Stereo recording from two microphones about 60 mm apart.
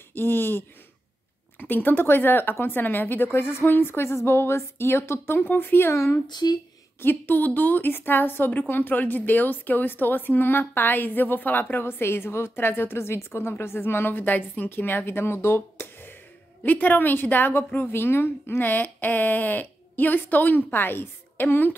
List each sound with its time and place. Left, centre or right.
0.1 s a woman's voice: left
7.0 s a woman's voice: left